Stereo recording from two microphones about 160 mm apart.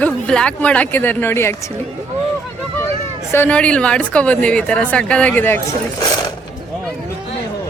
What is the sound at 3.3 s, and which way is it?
A woman's voice, 10° left (ahead or behind).